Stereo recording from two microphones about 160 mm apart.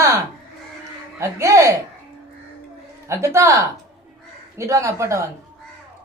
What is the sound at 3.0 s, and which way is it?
Speech, 15° right (ahead or behind).